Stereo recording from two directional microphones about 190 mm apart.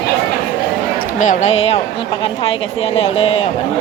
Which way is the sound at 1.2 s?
40° left (ahead or behind).